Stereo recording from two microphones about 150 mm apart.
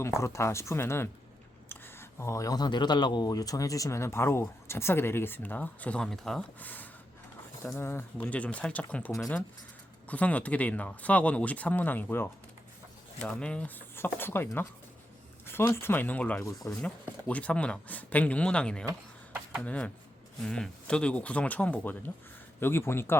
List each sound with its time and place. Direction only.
0.0 s speech: 20° left (ahead or behind)